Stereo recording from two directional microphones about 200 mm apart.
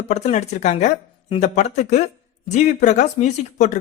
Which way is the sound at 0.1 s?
35° left (ahead or behind).